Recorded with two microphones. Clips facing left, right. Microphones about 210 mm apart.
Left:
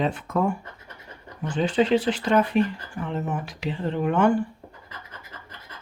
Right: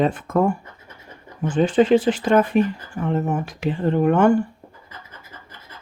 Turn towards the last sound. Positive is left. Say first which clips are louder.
# right 5 dB
turn(degrees=-45)  # may be behind; listen again after turning